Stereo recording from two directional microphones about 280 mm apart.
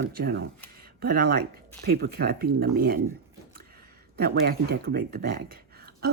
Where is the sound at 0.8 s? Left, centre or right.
Right.